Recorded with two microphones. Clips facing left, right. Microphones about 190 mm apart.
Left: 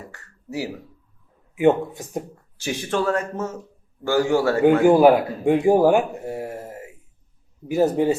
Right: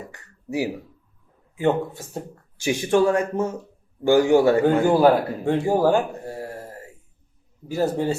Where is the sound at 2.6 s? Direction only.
15° right (ahead or behind).